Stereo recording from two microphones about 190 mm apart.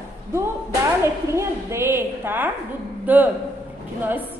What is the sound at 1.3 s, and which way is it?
A woman's voice, 15° right (ahead or behind).